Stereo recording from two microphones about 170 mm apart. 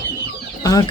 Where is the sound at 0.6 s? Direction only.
20° left (ahead or behind).